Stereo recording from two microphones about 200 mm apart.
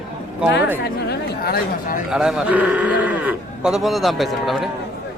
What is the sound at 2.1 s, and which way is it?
Speech, 5° right (ahead or behind).